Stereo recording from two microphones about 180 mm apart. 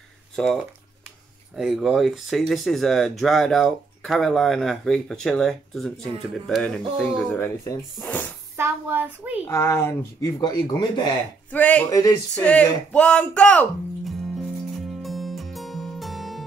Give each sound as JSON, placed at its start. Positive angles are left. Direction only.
{"t": 0.4, "sound": "speech", "side_deg": 0}
{"t": 7.3, "sound": "speech", "side_deg": 15}
{"t": 8.5, "sound": "a sound", "side_deg": -15}
{"t": 9.5, "sound": "speech", "side_deg": 15}
{"t": 11.5, "sound": "speech", "side_deg": 5}
{"t": 11.9, "sound": "speech", "side_deg": 20}
{"t": 12.4, "sound": "music", "side_deg": 5}